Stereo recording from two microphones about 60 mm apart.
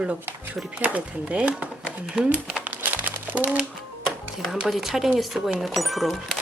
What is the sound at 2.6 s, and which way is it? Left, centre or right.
Crumpling, right.